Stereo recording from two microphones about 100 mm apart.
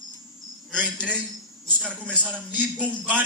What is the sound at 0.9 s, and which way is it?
Speech, 10° left (ahead or behind).